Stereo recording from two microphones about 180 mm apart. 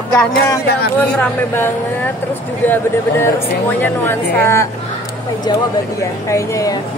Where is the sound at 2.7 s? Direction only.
10° left (ahead or behind).